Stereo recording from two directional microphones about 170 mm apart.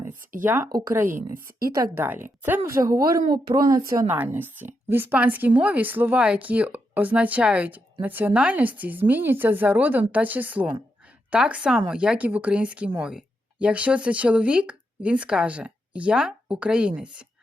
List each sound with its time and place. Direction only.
0.4 s a woman's voice: 15° right (ahead or behind)
0.7 s speech: 25° right (ahead or behind)
1.0 s speech: 55° right (ahead or behind)
1.7 s a woman's voice: 15° right (ahead or behind)